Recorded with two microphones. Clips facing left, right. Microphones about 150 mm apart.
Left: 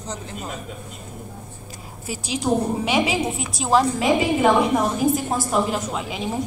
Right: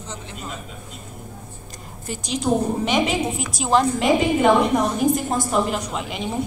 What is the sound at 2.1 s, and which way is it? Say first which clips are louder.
A woman's voice: right 1 dB; 5° left (ahead or behind).